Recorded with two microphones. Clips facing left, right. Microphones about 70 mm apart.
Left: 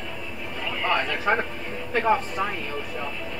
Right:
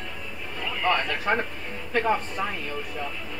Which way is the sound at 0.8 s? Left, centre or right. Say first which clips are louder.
Left 1 dB; centre.